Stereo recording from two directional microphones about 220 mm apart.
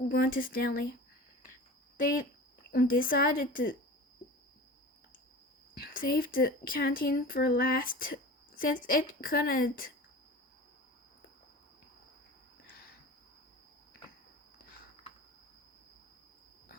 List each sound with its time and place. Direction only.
0.1 s speech: 45° left (ahead or behind)
2.7 s speech: 40° left (ahead or behind)
5.9 s speech: 40° left (ahead or behind)